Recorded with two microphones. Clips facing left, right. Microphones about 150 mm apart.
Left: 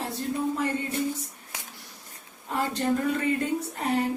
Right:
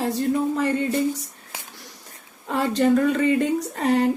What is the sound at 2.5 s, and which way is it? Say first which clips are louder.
Speech: right 7 dB; 90° right.